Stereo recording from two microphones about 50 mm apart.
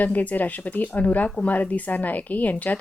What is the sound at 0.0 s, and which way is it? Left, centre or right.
Speech, left.